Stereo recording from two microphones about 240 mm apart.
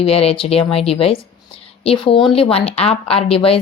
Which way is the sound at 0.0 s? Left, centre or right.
Left.